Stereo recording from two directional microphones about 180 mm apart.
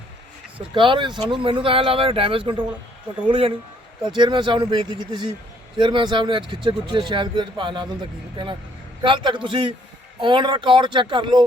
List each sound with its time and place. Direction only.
0.7 s a man's voice: 25° right (ahead or behind)